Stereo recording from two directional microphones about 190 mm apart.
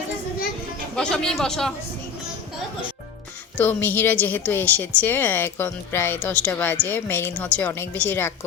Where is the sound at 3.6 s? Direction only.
10° left (ahead or behind).